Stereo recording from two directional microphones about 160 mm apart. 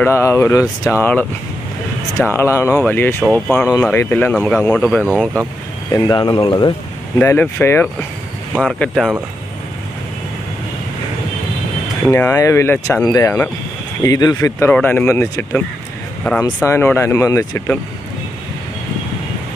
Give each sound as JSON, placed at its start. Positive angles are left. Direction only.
{"t": 0.0, "sound": "speech", "side_deg": 15}
{"t": 2.3, "sound": "speech", "side_deg": 15}
{"t": 3.2, "sound": "speech", "side_deg": 0}
{"t": 3.8, "sound": "speech", "side_deg": 15}
{"t": 5.9, "sound": "speech", "side_deg": 25}
{"t": 7.2, "sound": "speech", "side_deg": 10}
{"t": 12.1, "sound": "speech", "side_deg": 15}
{"t": 14.7, "sound": "speech", "side_deg": 10}